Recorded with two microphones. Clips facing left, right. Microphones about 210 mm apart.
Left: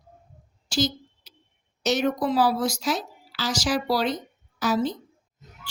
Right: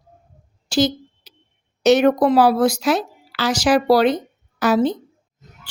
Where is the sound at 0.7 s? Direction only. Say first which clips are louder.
Right 7 dB; 65° right (ahead or behind).